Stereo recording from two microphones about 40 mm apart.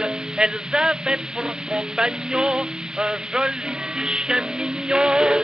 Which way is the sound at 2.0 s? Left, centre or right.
Right.